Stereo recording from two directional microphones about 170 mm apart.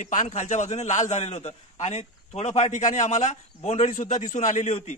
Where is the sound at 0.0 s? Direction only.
45° left (ahead or behind).